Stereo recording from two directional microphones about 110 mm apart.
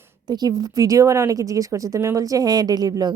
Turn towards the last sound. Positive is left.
turn(degrees=-35)  # may be behind; listen again after turning